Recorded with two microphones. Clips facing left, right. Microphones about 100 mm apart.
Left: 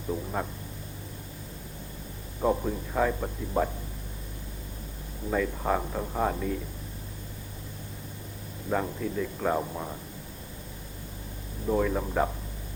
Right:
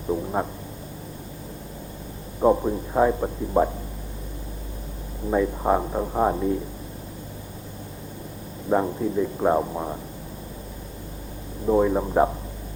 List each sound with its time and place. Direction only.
0.1 s speech: 25° right (ahead or behind)
2.4 s speech: 25° right (ahead or behind)
5.3 s speech: 25° right (ahead or behind)
8.7 s speech: 25° right (ahead or behind)
11.6 s speech: 25° right (ahead or behind)